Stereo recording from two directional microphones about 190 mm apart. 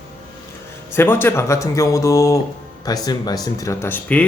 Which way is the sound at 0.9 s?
10° left (ahead or behind).